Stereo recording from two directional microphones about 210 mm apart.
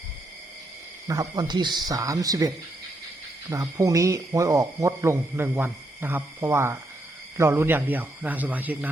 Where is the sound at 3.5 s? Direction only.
15° right (ahead or behind).